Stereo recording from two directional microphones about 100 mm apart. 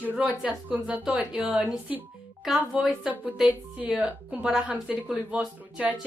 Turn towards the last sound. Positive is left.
turn(degrees=-10)  # may be behind; listen again after turning